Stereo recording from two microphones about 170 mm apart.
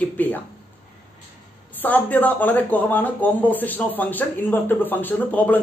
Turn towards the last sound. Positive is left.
turn(degrees=10)  # may be behind; listen again after turning